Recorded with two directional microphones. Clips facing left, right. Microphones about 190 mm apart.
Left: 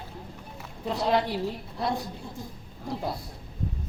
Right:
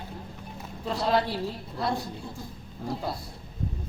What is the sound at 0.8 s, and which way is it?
A woman's voice, 15° left (ahead or behind).